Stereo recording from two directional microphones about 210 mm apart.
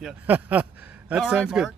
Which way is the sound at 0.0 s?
5° right (ahead or behind).